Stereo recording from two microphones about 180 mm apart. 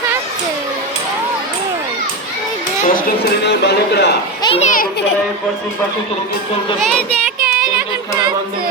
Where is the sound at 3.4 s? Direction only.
65° left (ahead or behind).